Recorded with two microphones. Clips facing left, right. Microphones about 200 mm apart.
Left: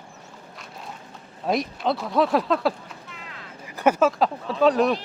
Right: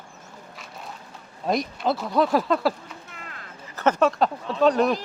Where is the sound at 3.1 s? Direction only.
50° right (ahead or behind).